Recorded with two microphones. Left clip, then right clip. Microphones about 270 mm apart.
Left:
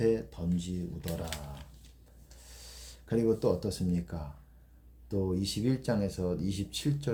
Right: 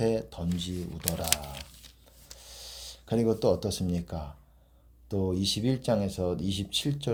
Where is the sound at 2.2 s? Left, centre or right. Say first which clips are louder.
Right 7 dB; right.